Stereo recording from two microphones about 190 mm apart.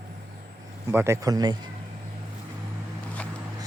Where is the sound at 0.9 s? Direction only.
15° right (ahead or behind).